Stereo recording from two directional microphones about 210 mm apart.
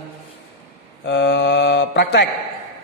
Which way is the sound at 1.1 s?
55° left (ahead or behind).